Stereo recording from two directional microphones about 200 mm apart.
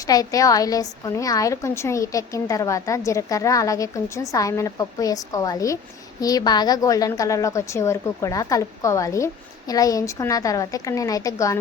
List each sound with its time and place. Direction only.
0.0 s a woman's voice: 20° left (ahead or behind)